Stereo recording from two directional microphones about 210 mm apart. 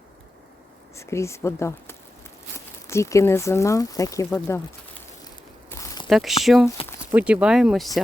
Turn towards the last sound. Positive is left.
turn(degrees=0)  # may be behind; listen again after turning